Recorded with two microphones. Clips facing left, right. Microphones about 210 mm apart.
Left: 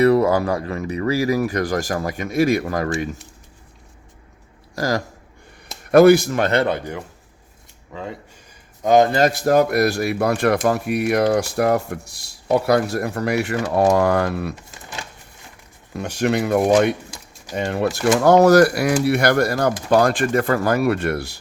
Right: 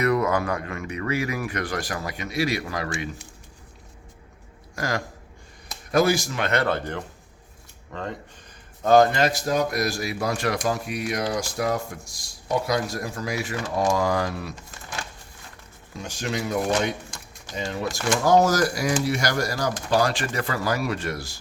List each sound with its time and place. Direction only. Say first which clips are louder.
0.0 s speech: left 7 dB; 30° left (ahead or behind); by 3.1 s 45° left (ahead or behind)
4.7 s speech: left 6 dB; 35° left (ahead or behind)
5.9 s speech: left 10 dB; 60° left (ahead or behind)
6.4 s speech: left 6 dB; 30° left (ahead or behind)
6.7 s speech: left 3 dB; 10° left (ahead or behind)
8.8 s speech: left 2 dB; 15° left (ahead or behind)
9.0 s speech: left 5 dB; 35° left (ahead or behind)
9.3 s speech: left 8 dB; 60° left (ahead or behind)
15.9 s speech: left 10 dB; 65° left (ahead or behind)